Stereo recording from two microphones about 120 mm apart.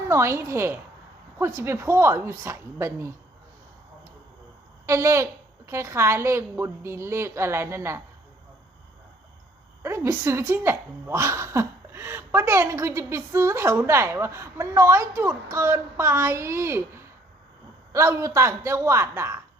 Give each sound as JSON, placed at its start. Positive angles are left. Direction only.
{"t": 0.1, "sound": "a woman's voice", "side_deg": -20}
{"t": 4.9, "sound": "a woman's voice", "side_deg": -25}
{"t": 9.8, "sound": "a woman's voice", "side_deg": -20}
{"t": 17.9, "sound": "a woman's voice", "side_deg": -25}